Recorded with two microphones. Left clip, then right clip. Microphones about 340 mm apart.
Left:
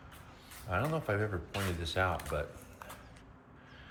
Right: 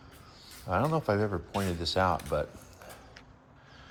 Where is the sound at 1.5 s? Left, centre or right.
Right.